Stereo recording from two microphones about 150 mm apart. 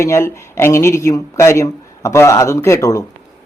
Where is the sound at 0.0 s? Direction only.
20° left (ahead or behind).